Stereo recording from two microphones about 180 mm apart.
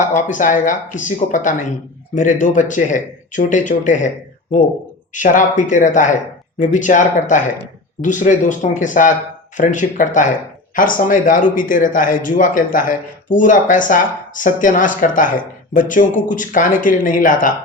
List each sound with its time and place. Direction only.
0.0 s a man's voice: 45° left (ahead or behind)
5.1 s a man's voice: 45° left (ahead or behind)